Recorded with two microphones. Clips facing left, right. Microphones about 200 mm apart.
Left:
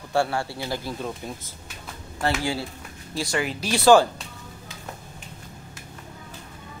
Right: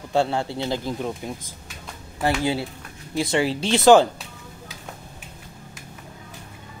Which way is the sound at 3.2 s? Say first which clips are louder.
Right 5 dB; 25° right (ahead or behind).